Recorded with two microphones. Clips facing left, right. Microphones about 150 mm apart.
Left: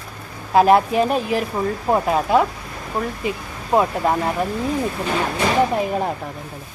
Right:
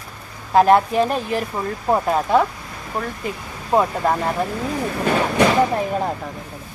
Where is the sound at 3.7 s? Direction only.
5° left (ahead or behind).